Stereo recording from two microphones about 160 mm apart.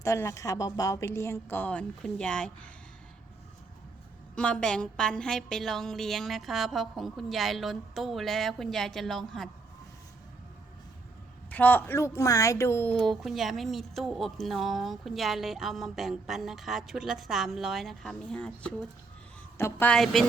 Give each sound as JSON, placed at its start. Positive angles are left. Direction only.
{"t": 0.0, "sound": "a woman's voice", "side_deg": 20}
{"t": 4.4, "sound": "speech", "side_deg": 5}
{"t": 11.5, "sound": "a woman's voice", "side_deg": 10}